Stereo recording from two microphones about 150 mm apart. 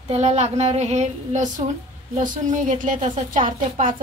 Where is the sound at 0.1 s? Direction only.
45° right (ahead or behind).